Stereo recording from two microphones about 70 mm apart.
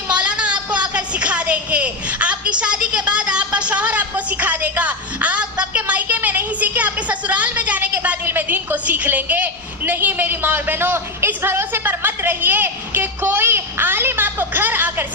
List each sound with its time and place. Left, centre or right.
0.1 s a woman's voice: centre